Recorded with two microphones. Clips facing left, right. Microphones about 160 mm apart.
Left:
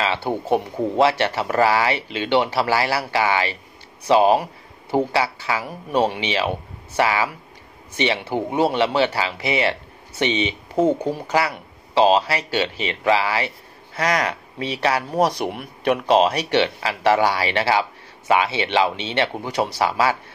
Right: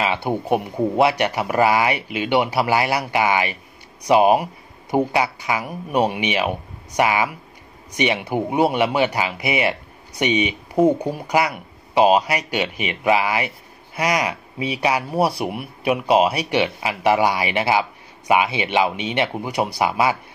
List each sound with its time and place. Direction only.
0.0 s speech: 15° right (ahead or behind)